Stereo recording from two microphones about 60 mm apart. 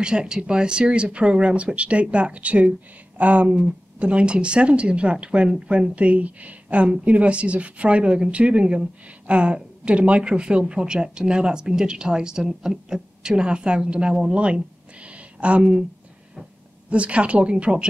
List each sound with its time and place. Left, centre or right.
0.0 s speech: centre
15.0 s a sound: right
16.9 s speech: right